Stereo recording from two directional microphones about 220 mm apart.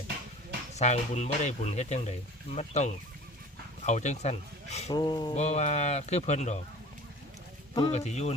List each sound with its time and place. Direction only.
0.7 s speech: 30° left (ahead or behind)
4.9 s speech: 20° left (ahead or behind)
5.3 s speech: 30° left (ahead or behind)
7.8 s speech: 30° left (ahead or behind)